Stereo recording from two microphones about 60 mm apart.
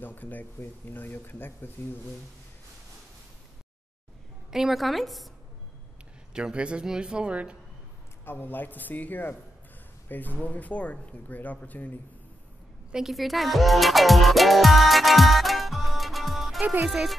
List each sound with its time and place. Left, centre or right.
0.0 s speech: left
4.5 s a woman's voice: centre
6.3 s speech: centre
8.3 s speech: left
12.9 s music: centre
16.8 s speech: centre